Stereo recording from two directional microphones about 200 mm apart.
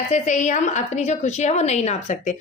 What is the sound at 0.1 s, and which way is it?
A woman's voice, 35° left (ahead or behind).